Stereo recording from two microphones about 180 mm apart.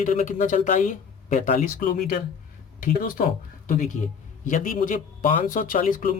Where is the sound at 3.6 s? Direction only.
45° left (ahead or behind).